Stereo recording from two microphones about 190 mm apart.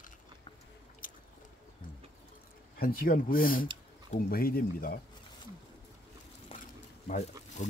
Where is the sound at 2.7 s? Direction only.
50° left (ahead or behind).